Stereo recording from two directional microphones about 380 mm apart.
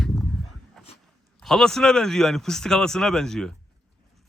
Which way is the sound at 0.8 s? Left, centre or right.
Centre.